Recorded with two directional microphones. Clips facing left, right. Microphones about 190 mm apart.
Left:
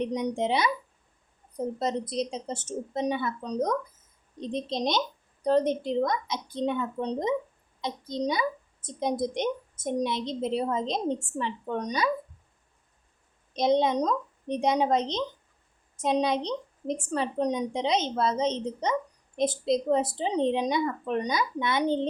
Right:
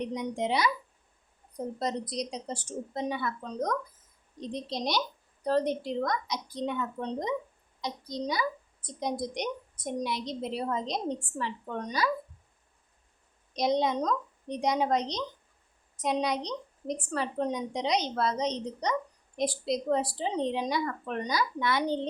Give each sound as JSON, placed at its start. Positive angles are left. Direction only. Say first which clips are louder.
{"t": 0.0, "sound": "a woman's voice", "louder": "left 4 dB", "side_deg": 20}
{"t": 1.8, "sound": "a woman's voice", "louder": "left 3 dB", "side_deg": 25}
{"t": 13.6, "sound": "a woman's voice", "louder": "left 4 dB", "side_deg": 25}